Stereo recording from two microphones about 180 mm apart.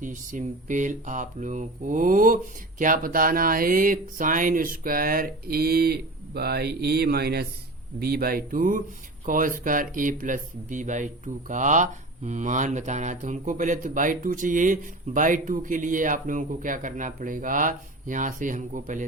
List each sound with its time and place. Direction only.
0.0 s speech: 45° right (ahead or behind)